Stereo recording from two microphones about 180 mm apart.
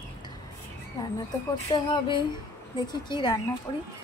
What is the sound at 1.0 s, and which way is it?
Speech, 20° left (ahead or behind).